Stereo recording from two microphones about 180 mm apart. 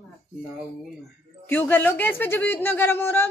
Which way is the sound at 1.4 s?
10° left (ahead or behind).